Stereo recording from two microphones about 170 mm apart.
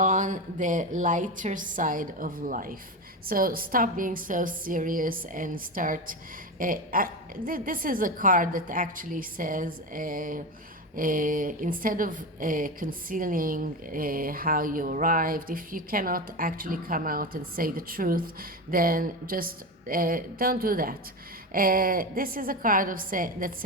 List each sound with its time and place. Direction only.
0.0 s a woman's voice: 50° right (ahead or behind)